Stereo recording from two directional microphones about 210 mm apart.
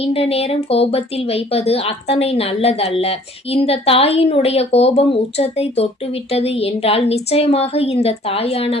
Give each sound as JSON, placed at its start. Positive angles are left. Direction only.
{"t": 0.0, "sound": "speech", "side_deg": 30}